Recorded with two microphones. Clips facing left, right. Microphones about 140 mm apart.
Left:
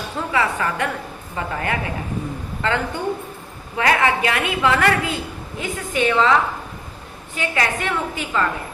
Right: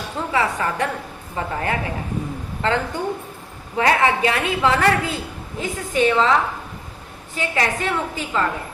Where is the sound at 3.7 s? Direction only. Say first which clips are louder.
Right 1 dB; 30° right (ahead or behind).